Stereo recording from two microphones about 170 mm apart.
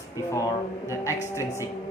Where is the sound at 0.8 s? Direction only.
15° left (ahead or behind).